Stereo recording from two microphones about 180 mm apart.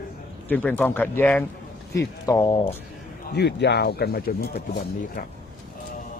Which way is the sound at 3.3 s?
70° left (ahead or behind).